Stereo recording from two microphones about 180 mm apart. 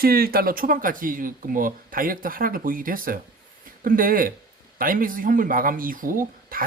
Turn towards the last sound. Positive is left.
turn(degrees=-50)  # may be behind; listen again after turning